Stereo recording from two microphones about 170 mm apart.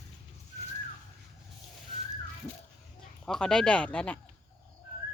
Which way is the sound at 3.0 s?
5° left (ahead or behind).